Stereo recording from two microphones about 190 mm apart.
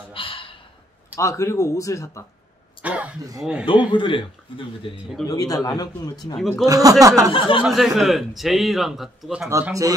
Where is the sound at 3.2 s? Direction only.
20° right (ahead or behind).